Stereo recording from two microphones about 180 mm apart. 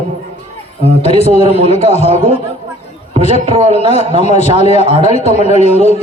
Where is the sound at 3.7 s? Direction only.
35° left (ahead or behind).